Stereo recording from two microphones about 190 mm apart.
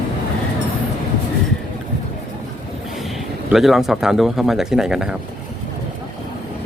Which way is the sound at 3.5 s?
Centre (ahead or behind).